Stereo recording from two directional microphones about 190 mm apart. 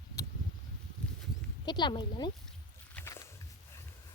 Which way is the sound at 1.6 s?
20° left (ahead or behind).